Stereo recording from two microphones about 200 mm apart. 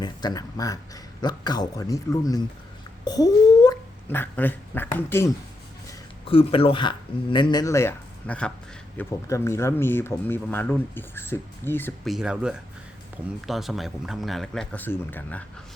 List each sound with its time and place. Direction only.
0.0 s speech: 20° left (ahead or behind)
6.2 s speech: 25° left (ahead or behind); by 11.9 s 10° left (ahead or behind)
12.0 s speech: 5° right (ahead or behind)